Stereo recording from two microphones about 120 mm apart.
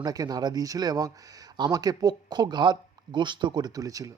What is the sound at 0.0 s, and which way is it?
Speech, 35° right (ahead or behind).